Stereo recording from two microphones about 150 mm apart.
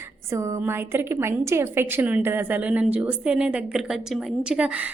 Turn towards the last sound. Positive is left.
turn(degrees=-5)  # may be behind; listen again after turning